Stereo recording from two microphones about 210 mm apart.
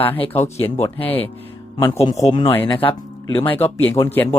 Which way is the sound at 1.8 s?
20° left (ahead or behind).